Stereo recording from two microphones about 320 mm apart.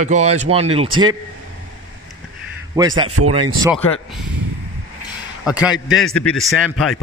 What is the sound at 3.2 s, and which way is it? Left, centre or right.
Speech, right.